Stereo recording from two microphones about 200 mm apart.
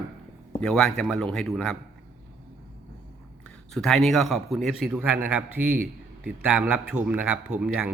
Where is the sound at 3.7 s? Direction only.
Centre (ahead or behind).